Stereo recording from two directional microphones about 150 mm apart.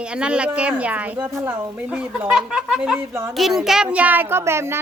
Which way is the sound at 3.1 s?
20° right (ahead or behind).